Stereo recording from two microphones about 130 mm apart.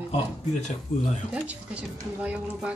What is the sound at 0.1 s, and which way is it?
Speech, 65° left (ahead or behind).